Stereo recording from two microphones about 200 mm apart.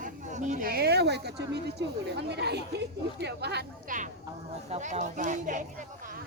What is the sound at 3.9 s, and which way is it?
Speech, 45° right (ahead or behind).